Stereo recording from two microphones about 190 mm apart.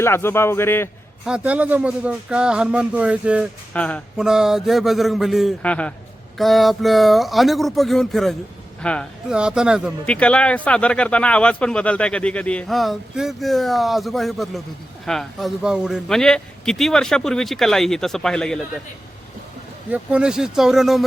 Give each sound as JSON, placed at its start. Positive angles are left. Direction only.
{"t": 0.0, "sound": "a man's voice", "side_deg": 15}
{"t": 1.2, "sound": "speech", "side_deg": -5}
{"t": 3.7, "sound": "speech", "side_deg": 5}
{"t": 19.9, "sound": "speech", "side_deg": -5}